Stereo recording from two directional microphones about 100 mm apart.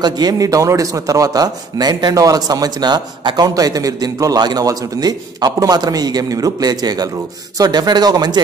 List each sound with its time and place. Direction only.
0.0 s a man's voice: 40° right (ahead or behind)